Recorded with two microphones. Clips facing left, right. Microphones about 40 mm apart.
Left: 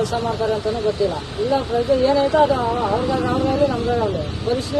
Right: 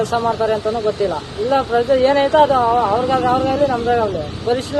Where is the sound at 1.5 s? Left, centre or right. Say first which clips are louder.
Right 4 dB; right.